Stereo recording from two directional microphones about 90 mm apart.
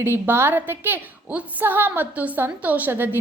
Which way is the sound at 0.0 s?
25° right (ahead or behind).